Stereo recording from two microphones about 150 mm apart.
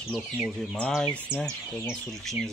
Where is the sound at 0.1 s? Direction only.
5° left (ahead or behind).